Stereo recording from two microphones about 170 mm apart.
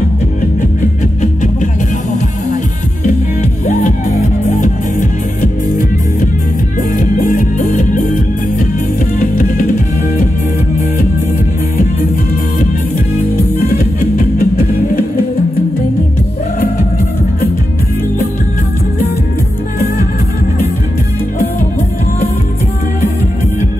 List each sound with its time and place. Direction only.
1.2 s music: 50° left (ahead or behind)
3.6 s music: 45° left (ahead or behind)
7.0 s music: 50° left (ahead or behind)
9.2 s music: 55° left (ahead or behind)
13.7 s music: 60° left (ahead or behind)